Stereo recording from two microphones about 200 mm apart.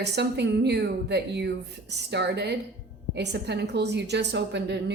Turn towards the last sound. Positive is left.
turn(degrees=-60)  # may be behind; listen again after turning